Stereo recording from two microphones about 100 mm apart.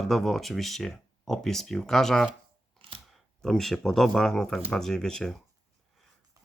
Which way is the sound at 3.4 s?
5° left (ahead or behind).